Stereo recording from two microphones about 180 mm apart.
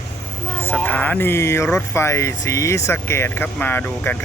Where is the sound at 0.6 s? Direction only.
10° left (ahead or behind).